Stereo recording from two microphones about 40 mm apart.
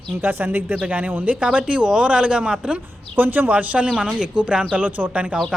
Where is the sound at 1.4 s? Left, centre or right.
Right.